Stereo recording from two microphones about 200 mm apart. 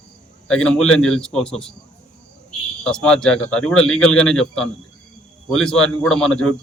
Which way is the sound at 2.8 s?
5° left (ahead or behind).